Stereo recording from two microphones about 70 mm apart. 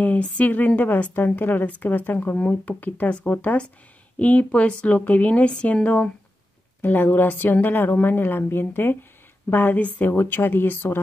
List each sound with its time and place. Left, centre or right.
0.0 s a woman's voice: left